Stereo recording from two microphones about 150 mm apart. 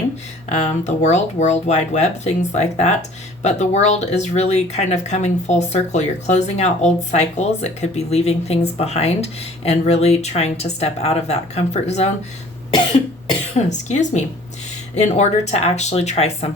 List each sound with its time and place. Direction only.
0.5 s speech: 50° left (ahead or behind)
13.6 s speech: 50° left (ahead or behind)